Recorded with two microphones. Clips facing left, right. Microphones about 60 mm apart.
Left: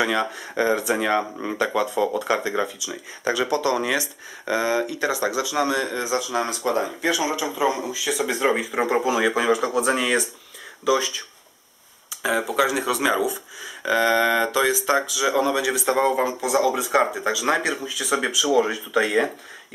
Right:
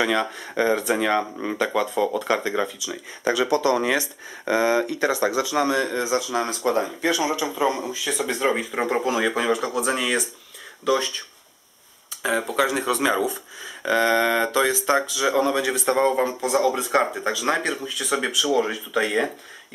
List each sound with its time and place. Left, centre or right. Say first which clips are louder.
0.0 s speech: even; centre
3.3 s speech: right 1 dB; left
4.5 s speech: right 2 dB; right
6.2 s speech: right 1 dB; centre
7.0 s speech: right 1 dB; centre